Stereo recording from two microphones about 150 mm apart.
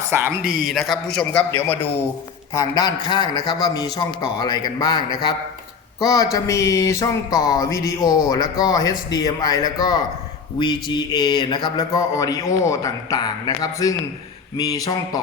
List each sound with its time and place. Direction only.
0.1 s speech: 15° right (ahead or behind)
0.4 s a man's voice: centre (ahead or behind)
2.5 s a sound: 20° left (ahead or behind)